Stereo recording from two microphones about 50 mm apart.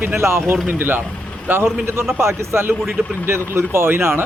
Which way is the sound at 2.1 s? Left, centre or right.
Right.